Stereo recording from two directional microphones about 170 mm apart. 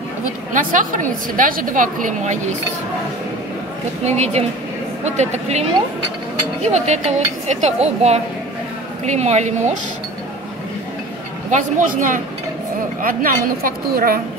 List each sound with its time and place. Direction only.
0.5 s a woman's voice: 50° right (ahead or behind)
4.0 s a woman's voice: 40° right (ahead or behind)
11.5 s a woman's voice: 50° right (ahead or behind)